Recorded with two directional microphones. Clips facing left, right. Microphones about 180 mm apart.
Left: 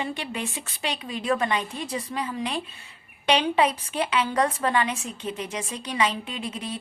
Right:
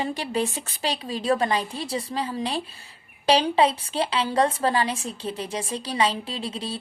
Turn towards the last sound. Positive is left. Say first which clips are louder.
# right 1 dB
turn(degrees=-30)  # may be behind; listen again after turning